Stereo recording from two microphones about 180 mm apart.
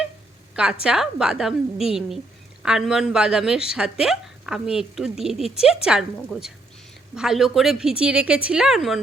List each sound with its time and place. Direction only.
0.5 s speech: 5° right (ahead or behind)
6.1 s a woman's voice: 10° left (ahead or behind)
7.2 s speech: centre (ahead or behind)